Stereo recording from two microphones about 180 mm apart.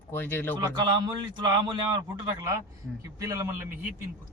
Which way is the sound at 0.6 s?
25° right (ahead or behind).